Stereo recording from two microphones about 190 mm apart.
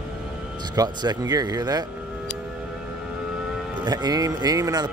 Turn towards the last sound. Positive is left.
turn(degrees=-20)  # may be behind; listen again after turning